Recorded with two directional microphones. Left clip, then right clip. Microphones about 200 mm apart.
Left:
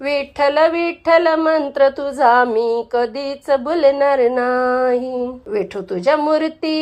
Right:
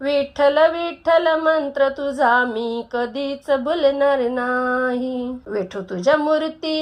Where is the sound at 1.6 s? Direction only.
10° left (ahead or behind).